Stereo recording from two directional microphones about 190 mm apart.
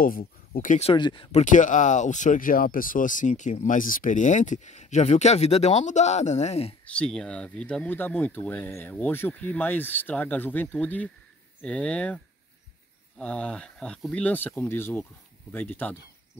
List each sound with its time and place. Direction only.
0.0 s speech: 50° left (ahead or behind); by 1.4 s 25° left (ahead or behind)
1.4 s speech: 40° left (ahead or behind)
7.0 s speech: 5° left (ahead or behind)
13.2 s speech: 5° left (ahead or behind)